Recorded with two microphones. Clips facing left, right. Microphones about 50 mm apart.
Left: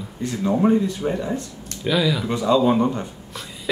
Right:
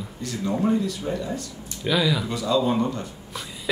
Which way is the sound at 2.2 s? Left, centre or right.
Left.